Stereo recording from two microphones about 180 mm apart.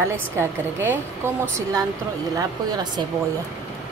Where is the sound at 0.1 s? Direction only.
15° right (ahead or behind).